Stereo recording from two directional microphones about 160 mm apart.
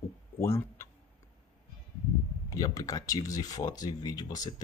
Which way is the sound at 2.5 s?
20° left (ahead or behind).